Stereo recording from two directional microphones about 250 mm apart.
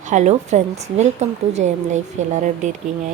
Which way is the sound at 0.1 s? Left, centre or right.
Right.